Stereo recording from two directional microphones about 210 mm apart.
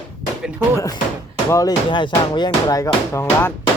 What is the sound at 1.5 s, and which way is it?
Speech, 15° left (ahead or behind).